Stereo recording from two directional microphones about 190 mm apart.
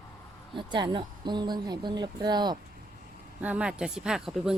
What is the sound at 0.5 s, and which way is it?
Speech, 25° right (ahead or behind).